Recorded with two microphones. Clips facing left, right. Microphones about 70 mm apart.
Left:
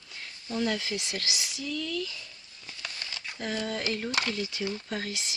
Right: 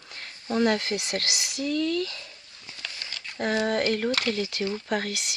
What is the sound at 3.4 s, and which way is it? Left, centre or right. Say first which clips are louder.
Speech: right 8 dB; right.